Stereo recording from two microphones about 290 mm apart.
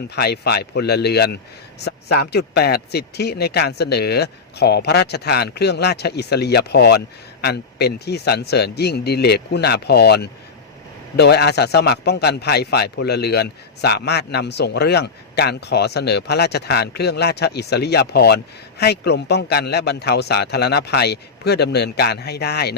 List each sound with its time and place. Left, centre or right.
0.2 s a man's voice: left